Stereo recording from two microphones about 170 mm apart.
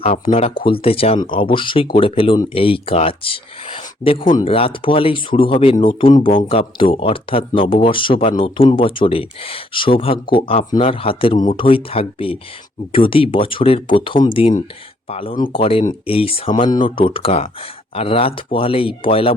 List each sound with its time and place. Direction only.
0.0 s speech: 40° left (ahead or behind)